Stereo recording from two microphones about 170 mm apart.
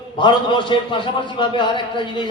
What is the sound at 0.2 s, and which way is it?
A man's voice, 30° left (ahead or behind).